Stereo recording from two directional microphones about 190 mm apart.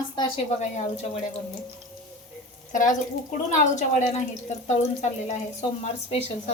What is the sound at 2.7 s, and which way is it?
A woman's voice, 40° left (ahead or behind).